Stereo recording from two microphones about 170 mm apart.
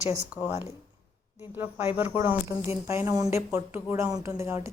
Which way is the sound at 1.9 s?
10° right (ahead or behind).